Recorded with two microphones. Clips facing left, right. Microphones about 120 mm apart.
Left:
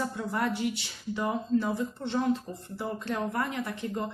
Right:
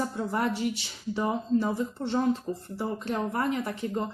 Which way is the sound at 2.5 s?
15° right (ahead or behind).